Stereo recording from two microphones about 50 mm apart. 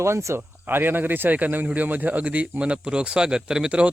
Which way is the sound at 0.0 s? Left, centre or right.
Right.